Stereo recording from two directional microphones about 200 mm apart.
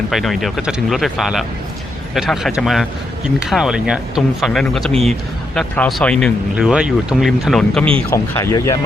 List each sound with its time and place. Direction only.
0.1 s speech: centre (ahead or behind)
8.1 s speech: 15° left (ahead or behind)